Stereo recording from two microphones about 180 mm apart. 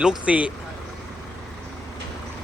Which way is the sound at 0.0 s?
5° right (ahead or behind).